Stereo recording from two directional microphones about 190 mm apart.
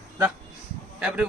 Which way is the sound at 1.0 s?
5° right (ahead or behind).